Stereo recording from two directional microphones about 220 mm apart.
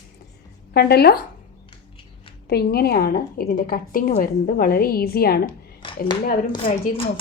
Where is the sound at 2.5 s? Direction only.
45° left (ahead or behind).